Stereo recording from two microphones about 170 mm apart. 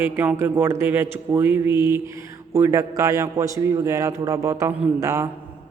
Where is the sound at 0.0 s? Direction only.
10° right (ahead or behind).